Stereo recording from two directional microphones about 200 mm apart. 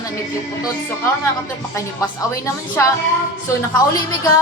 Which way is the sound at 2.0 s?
10° left (ahead or behind).